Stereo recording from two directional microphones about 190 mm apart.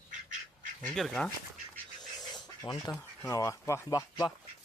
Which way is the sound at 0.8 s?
Centre (ahead or behind).